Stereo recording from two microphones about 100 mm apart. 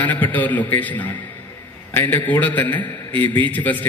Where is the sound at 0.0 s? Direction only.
15° left (ahead or behind).